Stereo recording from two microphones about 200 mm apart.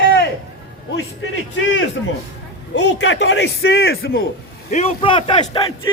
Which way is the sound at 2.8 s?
65° left (ahead or behind).